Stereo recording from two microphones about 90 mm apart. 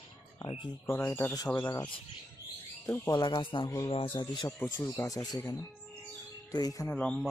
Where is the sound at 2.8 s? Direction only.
25° left (ahead or behind).